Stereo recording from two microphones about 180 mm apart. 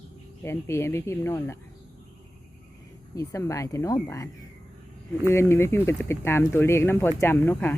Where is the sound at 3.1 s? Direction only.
15° left (ahead or behind).